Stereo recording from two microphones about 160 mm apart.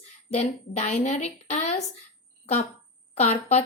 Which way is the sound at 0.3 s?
40° left (ahead or behind).